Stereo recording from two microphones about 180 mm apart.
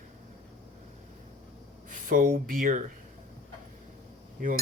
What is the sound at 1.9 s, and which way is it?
Speech, 50° right (ahead or behind).